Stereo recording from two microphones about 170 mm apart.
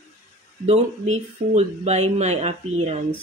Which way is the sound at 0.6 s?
40° right (ahead or behind).